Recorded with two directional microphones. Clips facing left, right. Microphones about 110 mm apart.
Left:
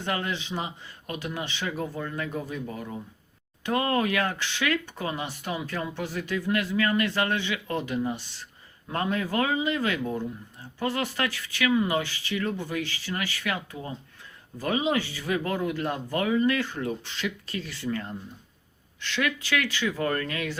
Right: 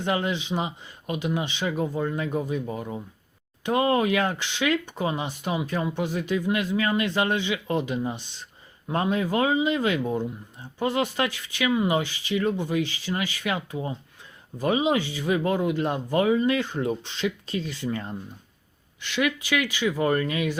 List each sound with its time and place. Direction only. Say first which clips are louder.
0.0 s speech: right 4 dB; 20° right (ahead or behind)